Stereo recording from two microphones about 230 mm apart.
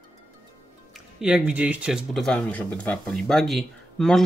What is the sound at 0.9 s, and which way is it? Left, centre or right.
Speech, centre.